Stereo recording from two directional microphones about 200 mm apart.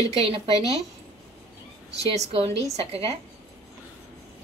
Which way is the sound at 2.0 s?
30° right (ahead or behind).